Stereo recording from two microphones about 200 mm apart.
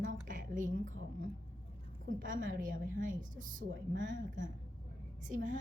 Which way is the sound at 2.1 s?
40° right (ahead or behind).